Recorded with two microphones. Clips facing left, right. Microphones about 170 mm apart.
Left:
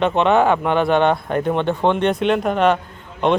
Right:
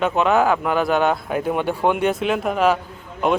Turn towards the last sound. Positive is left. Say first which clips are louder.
# left 2 dB
turn(degrees=-5)  # may be behind; listen again after turning